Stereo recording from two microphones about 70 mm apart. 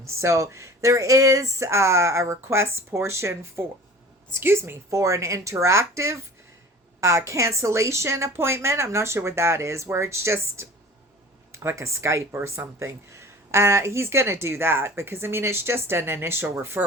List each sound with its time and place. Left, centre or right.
0.0 s speech: right